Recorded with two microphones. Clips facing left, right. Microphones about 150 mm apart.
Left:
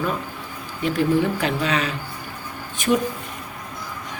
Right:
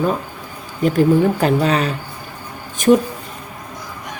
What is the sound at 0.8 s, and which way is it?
Speech, 40° right (ahead or behind).